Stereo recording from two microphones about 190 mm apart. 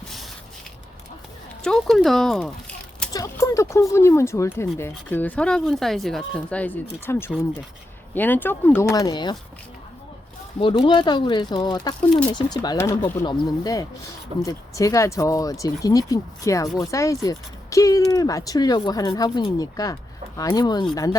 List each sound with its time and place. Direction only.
1.6 s speech: centre (ahead or behind)
3.1 s speech: 15° left (ahead or behind)
10.6 s speech: 25° left (ahead or behind)